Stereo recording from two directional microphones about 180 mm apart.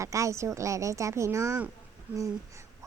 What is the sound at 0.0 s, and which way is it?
Speech, 15° right (ahead or behind).